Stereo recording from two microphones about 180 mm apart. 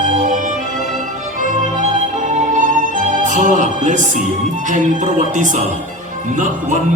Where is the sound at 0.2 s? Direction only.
45° right (ahead or behind).